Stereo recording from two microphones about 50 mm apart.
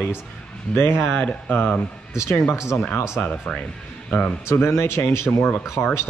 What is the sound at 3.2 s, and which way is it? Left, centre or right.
Speech, left.